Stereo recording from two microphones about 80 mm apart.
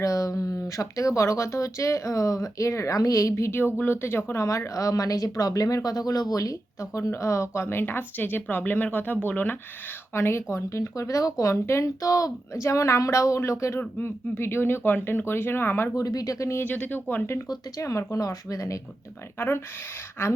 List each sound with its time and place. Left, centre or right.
0.0 s speech: left
16.0 s speech: left
16.6 s speech: left
17.5 s speech: left
19.4 s speech: left